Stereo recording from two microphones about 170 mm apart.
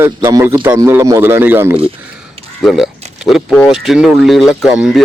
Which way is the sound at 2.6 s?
Centre (ahead or behind).